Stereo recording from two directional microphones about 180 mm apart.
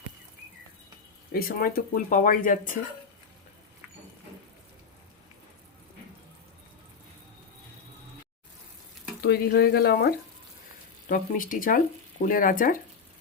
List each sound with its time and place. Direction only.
1.3 s speech: 55° left (ahead or behind)
9.2 s speech: 60° left (ahead or behind)
11.1 s speech: 50° left (ahead or behind)